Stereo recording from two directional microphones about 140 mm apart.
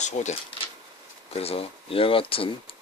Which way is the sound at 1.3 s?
45° left (ahead or behind).